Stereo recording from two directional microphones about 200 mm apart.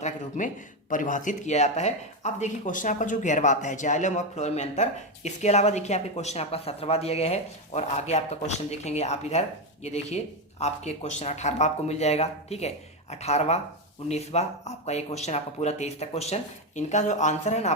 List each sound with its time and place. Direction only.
0.0 s speech: 40° left (ahead or behind)